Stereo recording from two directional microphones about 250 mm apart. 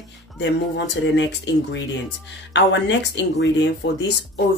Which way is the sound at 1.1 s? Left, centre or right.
Left.